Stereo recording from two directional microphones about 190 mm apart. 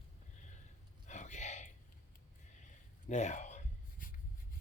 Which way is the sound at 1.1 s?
40° left (ahead or behind).